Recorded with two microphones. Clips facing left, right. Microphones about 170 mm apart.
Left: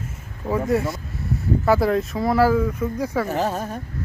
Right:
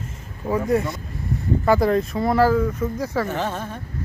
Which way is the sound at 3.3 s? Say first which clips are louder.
Left 2 dB; 35° left (ahead or behind).